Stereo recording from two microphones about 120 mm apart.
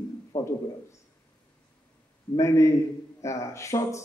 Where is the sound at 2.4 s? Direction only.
25° left (ahead or behind).